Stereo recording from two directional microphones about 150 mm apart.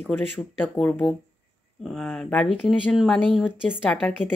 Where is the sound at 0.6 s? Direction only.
10° left (ahead or behind).